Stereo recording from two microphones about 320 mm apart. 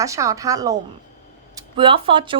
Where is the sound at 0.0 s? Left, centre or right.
Centre.